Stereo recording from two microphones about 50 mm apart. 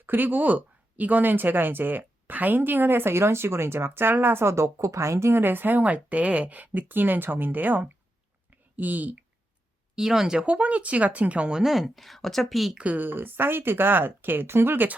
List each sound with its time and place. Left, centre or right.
0.0 s speech: right
4.4 s speech: right
5.3 s speech: right
9.9 s speech: centre
11.6 s speech: centre
12.7 s speech: right
13.0 s speech: right